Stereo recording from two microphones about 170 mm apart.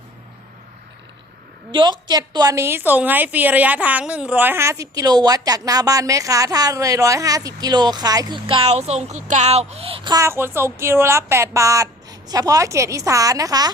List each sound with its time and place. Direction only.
1.7 s a woman's voice: 25° right (ahead or behind)